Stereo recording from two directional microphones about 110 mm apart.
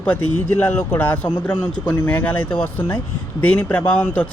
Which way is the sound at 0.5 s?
20° left (ahead or behind).